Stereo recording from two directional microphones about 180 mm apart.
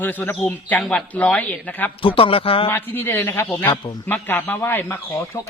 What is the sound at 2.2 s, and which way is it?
Speech, 30° left (ahead or behind).